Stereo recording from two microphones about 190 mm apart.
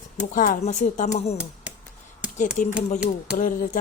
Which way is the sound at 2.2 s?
5° right (ahead or behind).